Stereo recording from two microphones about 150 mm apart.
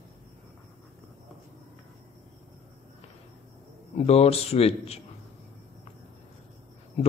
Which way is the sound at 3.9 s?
40° left (ahead or behind).